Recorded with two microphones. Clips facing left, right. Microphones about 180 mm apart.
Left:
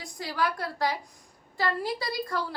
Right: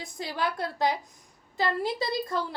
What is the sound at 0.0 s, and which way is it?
A woman's voice, 25° right (ahead or behind).